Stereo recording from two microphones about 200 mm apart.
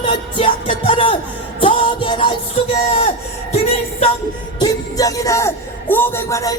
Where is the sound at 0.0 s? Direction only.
25° left (ahead or behind).